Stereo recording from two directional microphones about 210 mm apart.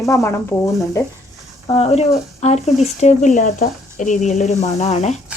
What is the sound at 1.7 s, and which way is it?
A woman's voice, 30° left (ahead or behind).